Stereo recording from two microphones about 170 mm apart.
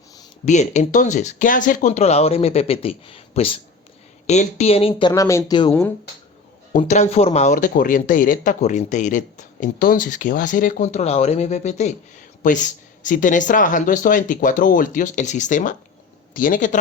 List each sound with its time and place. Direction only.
0.4 s speech: 45° left (ahead or behind); by 5.7 s 25° left (ahead or behind)
6.7 s speech: 45° left (ahead or behind)
9.7 s speech: 60° left (ahead or behind)